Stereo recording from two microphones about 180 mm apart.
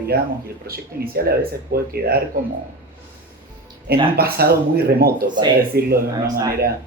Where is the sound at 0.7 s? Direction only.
55° right (ahead or behind).